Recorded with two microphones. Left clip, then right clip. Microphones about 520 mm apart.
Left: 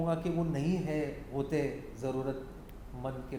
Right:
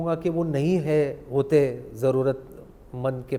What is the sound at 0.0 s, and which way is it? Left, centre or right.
A man's voice, right.